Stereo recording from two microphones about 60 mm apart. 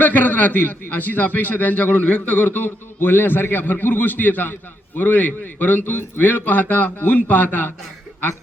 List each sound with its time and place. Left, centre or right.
0.0 s a man's voice: left